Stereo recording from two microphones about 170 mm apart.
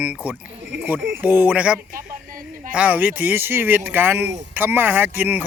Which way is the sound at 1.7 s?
55° right (ahead or behind).